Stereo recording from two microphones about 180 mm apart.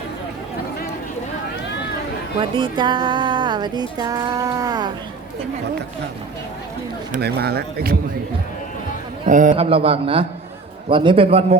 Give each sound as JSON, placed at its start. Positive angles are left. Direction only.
{"t": 2.4, "sound": "speech", "side_deg": -30}
{"t": 7.1, "sound": "speech", "side_deg": -65}
{"t": 9.2, "sound": "a man's voice", "side_deg": -45}
{"t": 9.6, "sound": "a man's voice", "side_deg": -30}